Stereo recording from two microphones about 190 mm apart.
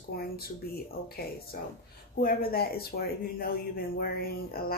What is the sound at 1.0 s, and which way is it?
Speech, 55° left (ahead or behind).